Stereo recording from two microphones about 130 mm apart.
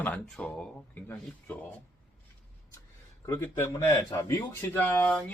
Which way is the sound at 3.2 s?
15° left (ahead or behind).